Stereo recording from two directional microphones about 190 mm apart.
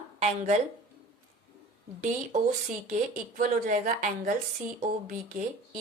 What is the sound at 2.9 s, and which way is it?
Speech, 40° right (ahead or behind).